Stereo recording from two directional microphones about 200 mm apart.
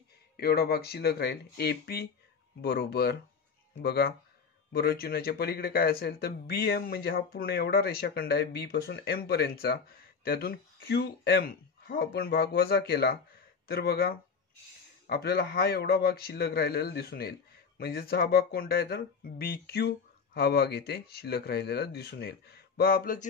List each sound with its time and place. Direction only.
0.4 s speech: 50° left (ahead or behind)